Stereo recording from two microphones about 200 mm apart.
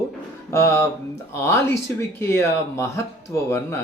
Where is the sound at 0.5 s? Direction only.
15° left (ahead or behind).